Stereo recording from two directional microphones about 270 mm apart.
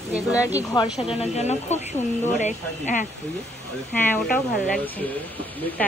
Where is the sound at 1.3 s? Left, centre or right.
Left.